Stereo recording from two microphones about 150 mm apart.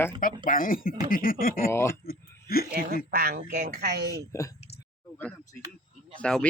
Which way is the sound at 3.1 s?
90° right.